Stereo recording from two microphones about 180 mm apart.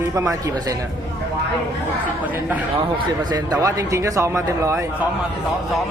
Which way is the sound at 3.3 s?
20° right (ahead or behind).